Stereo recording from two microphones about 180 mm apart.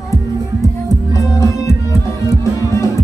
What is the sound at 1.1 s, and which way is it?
Music, 15° left (ahead or behind).